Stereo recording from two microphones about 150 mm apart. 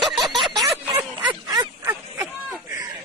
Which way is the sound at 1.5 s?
20° right (ahead or behind).